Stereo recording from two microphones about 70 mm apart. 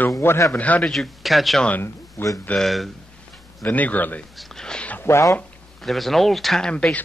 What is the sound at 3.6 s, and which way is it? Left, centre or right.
Speech, left.